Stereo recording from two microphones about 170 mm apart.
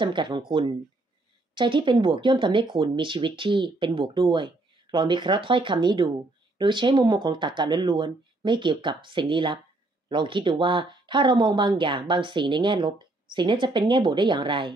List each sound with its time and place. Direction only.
0.0 s speech: 30° right (ahead or behind)